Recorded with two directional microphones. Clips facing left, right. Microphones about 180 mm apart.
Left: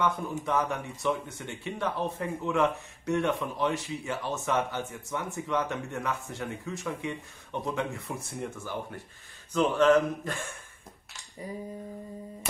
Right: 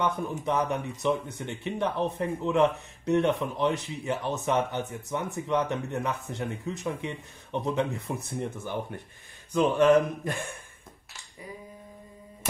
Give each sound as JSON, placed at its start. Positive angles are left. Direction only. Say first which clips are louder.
{"t": 0.0, "sound": "a man's voice", "louder": "right 1 dB", "side_deg": -20}